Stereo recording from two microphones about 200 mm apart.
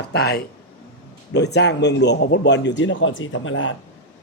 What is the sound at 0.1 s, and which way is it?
A man's voice, 55° left (ahead or behind).